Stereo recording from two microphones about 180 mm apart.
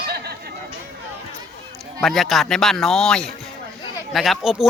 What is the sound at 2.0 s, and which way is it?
Speech, centre (ahead or behind).